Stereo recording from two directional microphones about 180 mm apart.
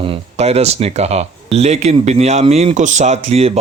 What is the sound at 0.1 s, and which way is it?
Speech, 35° right (ahead or behind).